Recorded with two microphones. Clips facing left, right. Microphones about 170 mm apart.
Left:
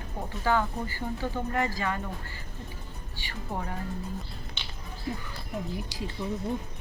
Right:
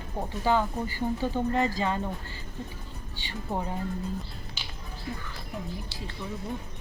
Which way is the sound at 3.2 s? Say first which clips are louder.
Right 3 dB; 20° right (ahead or behind).